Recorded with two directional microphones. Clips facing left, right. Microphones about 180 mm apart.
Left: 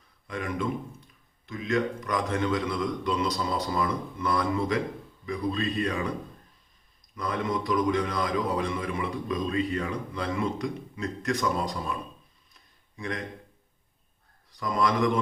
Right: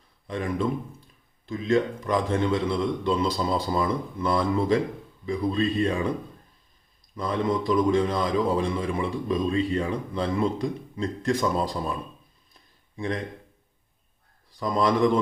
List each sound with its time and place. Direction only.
0.3 s a man's voice: 30° right (ahead or behind)
7.2 s a man's voice: 30° right (ahead or behind)
13.0 s a man's voice: 30° right (ahead or behind)
14.6 s a man's voice: 25° right (ahead or behind)